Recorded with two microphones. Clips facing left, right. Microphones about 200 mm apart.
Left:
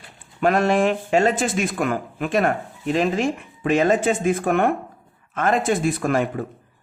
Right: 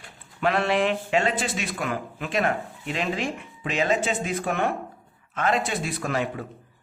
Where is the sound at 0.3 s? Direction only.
45° left (ahead or behind).